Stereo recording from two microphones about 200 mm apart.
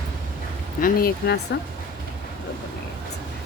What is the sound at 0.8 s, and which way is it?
Speech, 45° left (ahead or behind).